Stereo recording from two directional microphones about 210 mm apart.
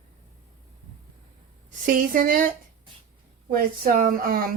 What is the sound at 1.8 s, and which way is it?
Speech, 40° right (ahead or behind).